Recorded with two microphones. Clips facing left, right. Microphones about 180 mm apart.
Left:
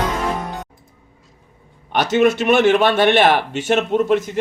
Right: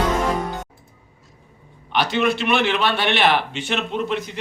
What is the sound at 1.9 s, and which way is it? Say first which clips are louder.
A man's voice: left 5 dB; 45° left (ahead or behind).